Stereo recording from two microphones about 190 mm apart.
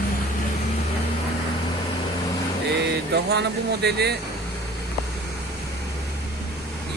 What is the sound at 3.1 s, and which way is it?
Speech, 60° right (ahead or behind).